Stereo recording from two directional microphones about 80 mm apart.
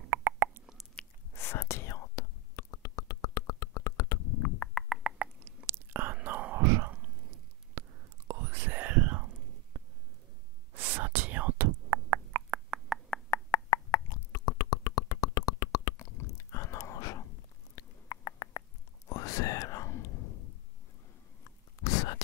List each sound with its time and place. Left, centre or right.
0.1 s plop: right
1.3 s whispering: left
4.8 s a sound: centre
5.7 s whispering: right
7.8 s chewing: right
8.3 s whispering: right
10.8 s whispering: right
13.3 s beatboxing: left
16.0 s whispering: left
17.7 s a sound: left
19.0 s whispering: left
21.8 s a sound: left